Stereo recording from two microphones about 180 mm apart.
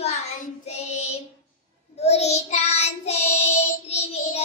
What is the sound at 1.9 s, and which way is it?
Child singing, 35° left (ahead or behind).